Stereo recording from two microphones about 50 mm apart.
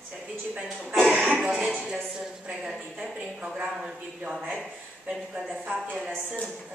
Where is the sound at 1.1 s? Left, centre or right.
Centre.